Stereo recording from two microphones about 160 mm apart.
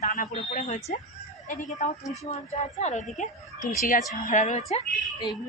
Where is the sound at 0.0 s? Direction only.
50° left (ahead or behind).